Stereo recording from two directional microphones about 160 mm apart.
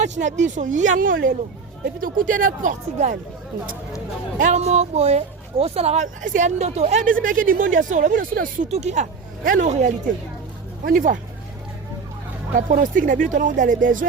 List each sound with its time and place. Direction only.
0.0 s speech: 50° right (ahead or behind)
4.4 s speech: 50° right (ahead or behind)
8.7 s speech: 45° right (ahead or behind)
10.8 s speech: 60° right (ahead or behind)
12.5 s speech: 55° right (ahead or behind)